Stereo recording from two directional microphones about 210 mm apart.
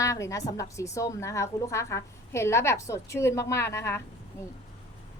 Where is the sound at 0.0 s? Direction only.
15° left (ahead or behind).